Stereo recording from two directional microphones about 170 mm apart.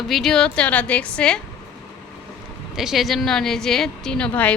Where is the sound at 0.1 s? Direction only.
Centre (ahead or behind).